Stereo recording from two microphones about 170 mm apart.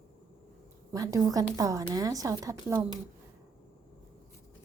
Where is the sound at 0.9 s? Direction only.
20° right (ahead or behind).